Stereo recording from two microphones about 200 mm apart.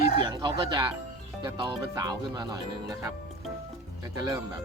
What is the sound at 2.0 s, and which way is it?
Speech, 20° right (ahead or behind).